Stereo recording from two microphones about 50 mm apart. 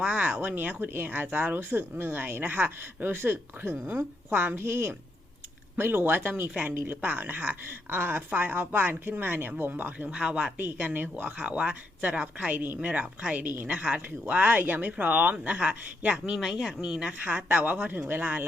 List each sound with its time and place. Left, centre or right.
0.0 s speech: right
0.5 s speech: right
10.1 s speech: right
10.6 s speech: right
11.4 s speech: right
15.5 s a woman's voice: right
17.2 s speech: right